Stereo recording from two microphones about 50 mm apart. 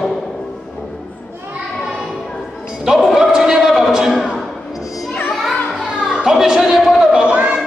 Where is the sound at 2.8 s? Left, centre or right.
Centre.